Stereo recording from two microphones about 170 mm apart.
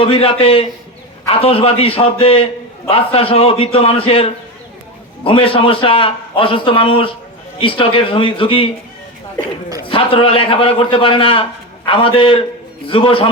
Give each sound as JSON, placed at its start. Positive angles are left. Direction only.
{"t": 0.0, "sound": "a man's voice", "side_deg": 30}
{"t": 9.9, "sound": "a man's voice", "side_deg": 30}